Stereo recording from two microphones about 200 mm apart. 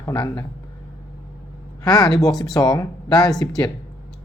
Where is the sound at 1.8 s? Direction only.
20° left (ahead or behind).